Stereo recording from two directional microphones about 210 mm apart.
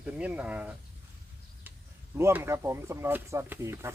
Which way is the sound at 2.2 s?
10° right (ahead or behind).